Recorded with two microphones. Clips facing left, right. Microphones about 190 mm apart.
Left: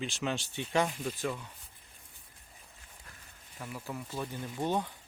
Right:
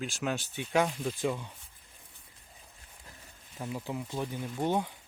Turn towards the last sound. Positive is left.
turn(degrees=-10)  # may be behind; listen again after turning